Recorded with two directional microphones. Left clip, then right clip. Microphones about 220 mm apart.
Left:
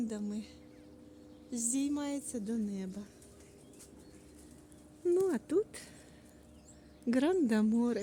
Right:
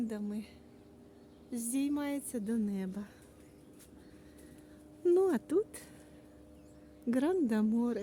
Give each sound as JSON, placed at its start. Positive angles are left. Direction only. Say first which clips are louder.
{"t": 0.0, "sound": "speech", "louder": "even", "side_deg": 0}
{"t": 1.5, "sound": "a woman's voice", "louder": "even", "side_deg": 0}
{"t": 2.5, "sound": "a woman's voice", "louder": "right 3 dB", "side_deg": -25}
{"t": 5.0, "sound": "speech", "louder": "right 2 dB", "side_deg": -20}
{"t": 7.1, "sound": "a woman's voice", "louder": "left 1 dB", "side_deg": 5}